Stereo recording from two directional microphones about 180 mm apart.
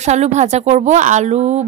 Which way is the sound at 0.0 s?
40° right (ahead or behind).